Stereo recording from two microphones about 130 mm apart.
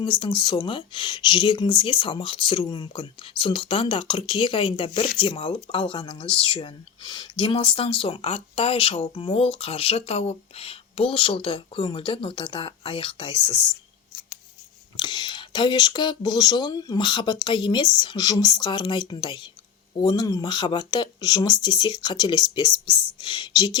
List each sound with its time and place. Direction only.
0.0 s speech: 40° left (ahead or behind)
14.9 s speech: 35° left (ahead or behind)